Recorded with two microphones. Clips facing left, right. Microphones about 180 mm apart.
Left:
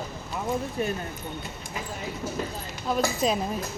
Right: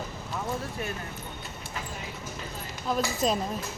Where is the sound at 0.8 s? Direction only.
25° left (ahead or behind).